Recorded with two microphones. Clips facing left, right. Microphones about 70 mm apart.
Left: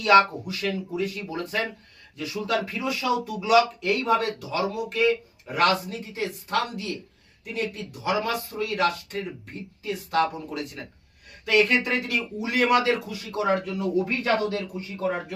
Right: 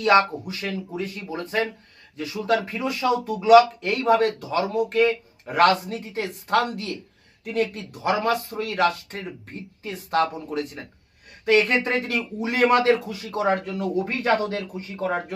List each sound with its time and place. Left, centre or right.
0.0 s speech: right
8.0 s speech: right